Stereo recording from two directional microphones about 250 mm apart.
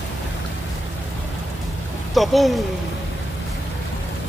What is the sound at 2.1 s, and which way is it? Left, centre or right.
Speech, centre.